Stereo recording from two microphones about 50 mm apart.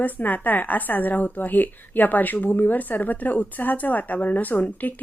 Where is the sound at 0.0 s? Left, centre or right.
Left.